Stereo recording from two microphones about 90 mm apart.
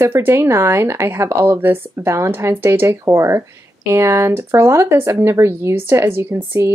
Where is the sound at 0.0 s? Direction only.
25° right (ahead or behind).